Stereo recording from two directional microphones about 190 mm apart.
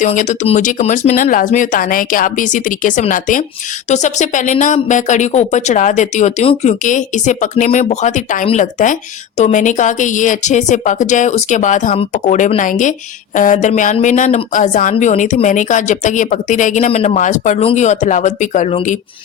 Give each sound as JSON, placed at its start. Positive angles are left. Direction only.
{"t": 0.0, "sound": "speech", "side_deg": 40}